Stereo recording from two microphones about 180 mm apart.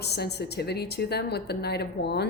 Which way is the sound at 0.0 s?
65° left (ahead or behind).